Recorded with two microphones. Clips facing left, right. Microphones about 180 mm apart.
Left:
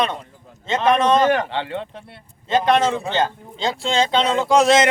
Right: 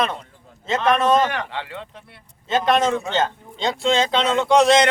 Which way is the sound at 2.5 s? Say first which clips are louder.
Left 1 dB; centre (ahead or behind).